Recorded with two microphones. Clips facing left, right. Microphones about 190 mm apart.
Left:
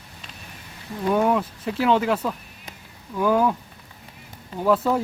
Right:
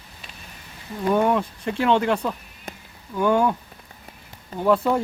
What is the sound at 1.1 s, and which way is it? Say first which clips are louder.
Speech: even; 5° left (ahead or behind).